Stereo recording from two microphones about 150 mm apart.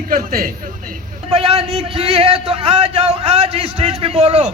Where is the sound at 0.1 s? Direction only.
75° right (ahead or behind).